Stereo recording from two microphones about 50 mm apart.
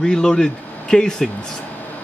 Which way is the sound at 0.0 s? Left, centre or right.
Centre.